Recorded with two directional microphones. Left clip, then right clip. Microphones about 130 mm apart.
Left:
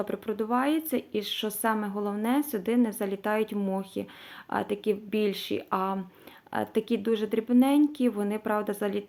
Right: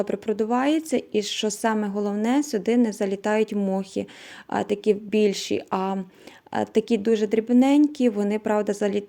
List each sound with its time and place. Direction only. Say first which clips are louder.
0.0 s a woman's voice: right 6 dB; 35° right (ahead or behind)